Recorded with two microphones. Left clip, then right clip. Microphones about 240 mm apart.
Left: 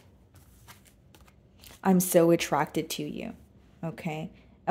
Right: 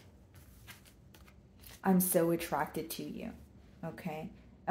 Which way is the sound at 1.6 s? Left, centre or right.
Left.